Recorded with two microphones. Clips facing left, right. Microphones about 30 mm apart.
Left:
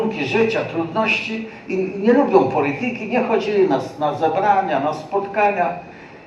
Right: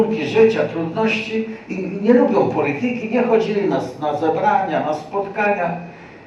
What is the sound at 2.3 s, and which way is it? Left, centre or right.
A man's voice, left.